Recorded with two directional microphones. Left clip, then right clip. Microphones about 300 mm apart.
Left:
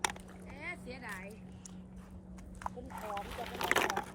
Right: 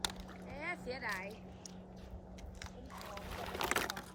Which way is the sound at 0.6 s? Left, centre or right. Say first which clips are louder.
Right 3 dB; centre.